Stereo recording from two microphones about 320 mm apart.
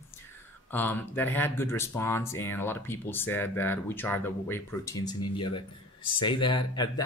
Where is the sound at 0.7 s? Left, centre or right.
Centre.